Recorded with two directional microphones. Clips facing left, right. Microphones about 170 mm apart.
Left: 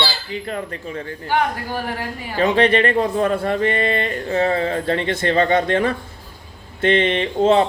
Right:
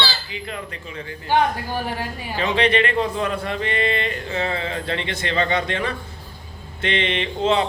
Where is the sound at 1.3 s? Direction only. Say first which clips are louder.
Right 1 dB; 15° right (ahead or behind).